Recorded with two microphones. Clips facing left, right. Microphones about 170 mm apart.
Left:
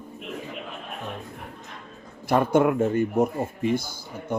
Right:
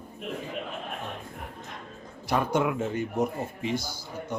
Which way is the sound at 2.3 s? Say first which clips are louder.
Left 6 dB; 55° left (ahead or behind).